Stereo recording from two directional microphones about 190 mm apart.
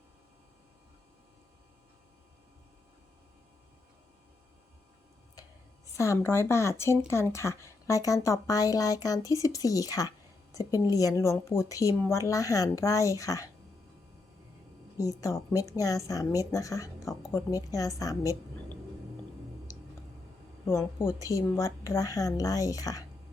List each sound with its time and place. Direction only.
6.0 s a woman's voice: 15° left (ahead or behind)
14.9 s a woman's voice: 15° left (ahead or behind)
20.7 s a woman's voice: 15° left (ahead or behind)